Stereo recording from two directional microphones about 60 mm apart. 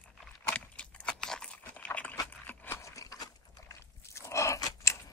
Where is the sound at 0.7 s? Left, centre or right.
Centre.